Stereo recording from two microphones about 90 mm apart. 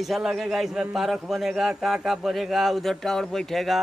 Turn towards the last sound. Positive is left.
turn(degrees=0)  # may be behind; listen again after turning